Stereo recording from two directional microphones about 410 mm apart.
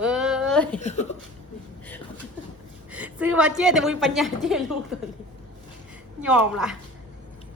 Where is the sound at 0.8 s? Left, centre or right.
Centre.